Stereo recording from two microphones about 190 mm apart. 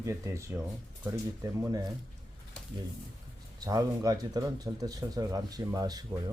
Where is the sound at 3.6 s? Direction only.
20° right (ahead or behind).